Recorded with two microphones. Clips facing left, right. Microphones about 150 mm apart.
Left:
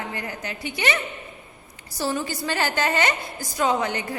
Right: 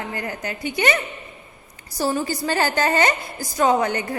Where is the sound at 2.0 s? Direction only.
40° right (ahead or behind).